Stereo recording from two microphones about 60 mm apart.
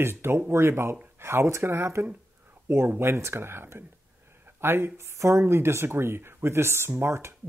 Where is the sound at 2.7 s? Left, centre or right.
Right.